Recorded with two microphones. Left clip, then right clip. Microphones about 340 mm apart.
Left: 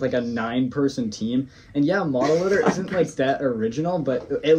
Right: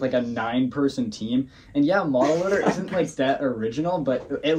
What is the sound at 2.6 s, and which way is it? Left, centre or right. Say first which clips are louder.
Speech: left 2 dB; centre.